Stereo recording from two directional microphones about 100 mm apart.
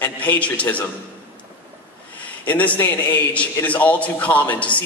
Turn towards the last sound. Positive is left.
turn(degrees=15)  # may be behind; listen again after turning